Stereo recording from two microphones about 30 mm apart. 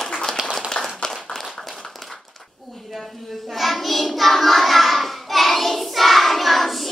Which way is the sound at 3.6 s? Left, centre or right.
Centre.